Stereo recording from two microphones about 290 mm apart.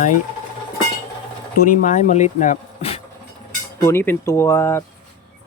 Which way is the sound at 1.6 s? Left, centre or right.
Left.